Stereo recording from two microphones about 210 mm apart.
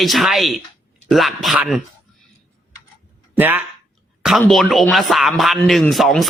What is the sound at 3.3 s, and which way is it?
A man's voice, 10° right (ahead or behind).